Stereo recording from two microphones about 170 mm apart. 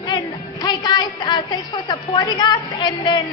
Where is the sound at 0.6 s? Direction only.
25° left (ahead or behind).